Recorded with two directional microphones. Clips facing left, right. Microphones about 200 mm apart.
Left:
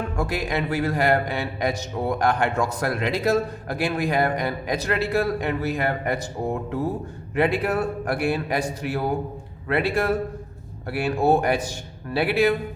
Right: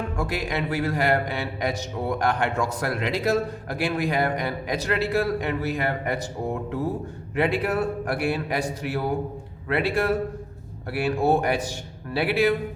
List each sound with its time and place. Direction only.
0.2 s a man's voice: 50° left (ahead or behind)
7.3 s a man's voice: 45° left (ahead or behind)